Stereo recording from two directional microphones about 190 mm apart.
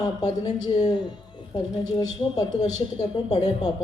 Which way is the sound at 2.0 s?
20° left (ahead or behind).